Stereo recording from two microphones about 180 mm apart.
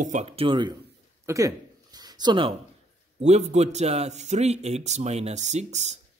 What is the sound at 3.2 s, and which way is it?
Speech, 40° right (ahead or behind).